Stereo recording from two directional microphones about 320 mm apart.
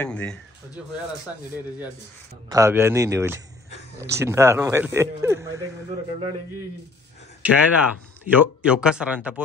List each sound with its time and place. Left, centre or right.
0.0 s speech: centre
2.5 s speech: centre
7.4 s speech: centre